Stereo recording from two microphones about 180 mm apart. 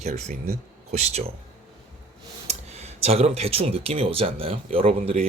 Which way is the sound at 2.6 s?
35° right (ahead or behind).